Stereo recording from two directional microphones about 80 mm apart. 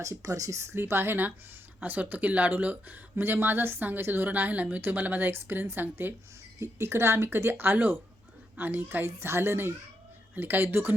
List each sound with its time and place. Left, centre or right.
0.0 s speech: right